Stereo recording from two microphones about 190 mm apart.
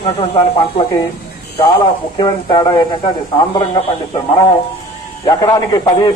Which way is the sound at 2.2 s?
25° left (ahead or behind).